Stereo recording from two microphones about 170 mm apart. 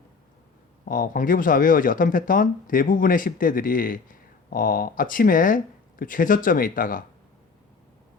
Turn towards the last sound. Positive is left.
turn(degrees=55)  # may be behind; listen again after turning